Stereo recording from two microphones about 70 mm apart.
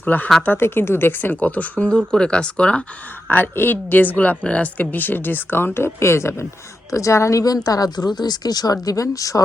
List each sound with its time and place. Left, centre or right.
0.0 s a woman's voice: left
1.9 s speech: centre
3.2 s a woman's voice: left